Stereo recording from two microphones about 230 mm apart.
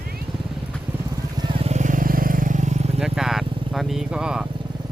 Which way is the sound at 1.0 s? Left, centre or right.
Centre.